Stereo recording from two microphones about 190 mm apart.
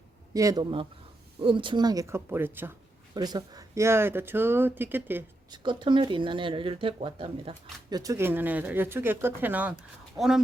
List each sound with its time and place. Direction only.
0.3 s speech: 20° right (ahead or behind)
5.5 s speech: 25° right (ahead or behind); by 10.4 s centre (ahead or behind)